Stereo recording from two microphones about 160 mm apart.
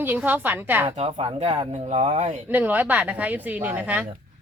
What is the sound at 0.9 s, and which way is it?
Speech, 40° right (ahead or behind).